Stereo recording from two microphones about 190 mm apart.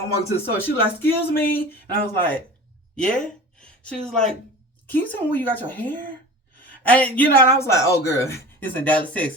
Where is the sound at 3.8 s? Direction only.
5° left (ahead or behind).